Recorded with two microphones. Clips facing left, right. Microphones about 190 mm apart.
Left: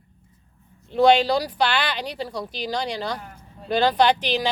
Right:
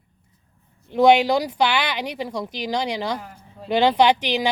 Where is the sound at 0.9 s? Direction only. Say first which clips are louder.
Right 2 dB; 15° right (ahead or behind).